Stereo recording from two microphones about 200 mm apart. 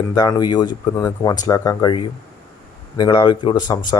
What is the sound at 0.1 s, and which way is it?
Speech, 20° left (ahead or behind).